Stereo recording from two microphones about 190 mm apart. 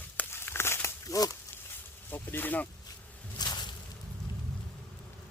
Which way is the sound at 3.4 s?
20° left (ahead or behind).